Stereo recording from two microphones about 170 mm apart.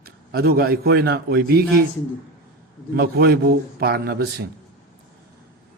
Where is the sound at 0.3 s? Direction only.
65° right (ahead or behind).